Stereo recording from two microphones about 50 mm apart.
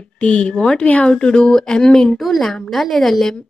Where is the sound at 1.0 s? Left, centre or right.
Centre.